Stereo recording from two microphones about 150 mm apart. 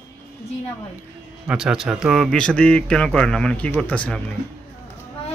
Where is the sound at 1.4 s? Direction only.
5° right (ahead or behind).